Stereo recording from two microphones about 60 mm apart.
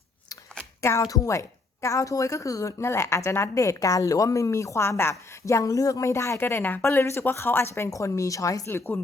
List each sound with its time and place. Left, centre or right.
0.8 s speech: left
1.0 s a woman's voice: left
5.5 s a woman's voice: left
6.6 s speech: left
6.8 s speech: left
7.9 s a woman's voice: left